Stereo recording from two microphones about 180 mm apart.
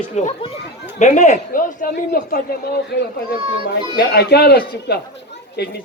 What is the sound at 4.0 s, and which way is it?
A man's voice, 65° left (ahead or behind).